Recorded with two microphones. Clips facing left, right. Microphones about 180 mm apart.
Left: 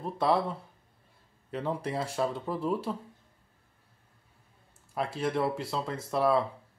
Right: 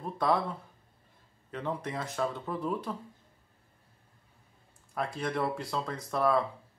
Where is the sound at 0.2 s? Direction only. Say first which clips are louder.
Left 2 dB; 25° left (ahead or behind).